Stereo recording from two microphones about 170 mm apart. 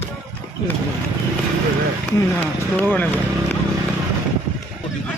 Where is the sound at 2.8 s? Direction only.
10° left (ahead or behind).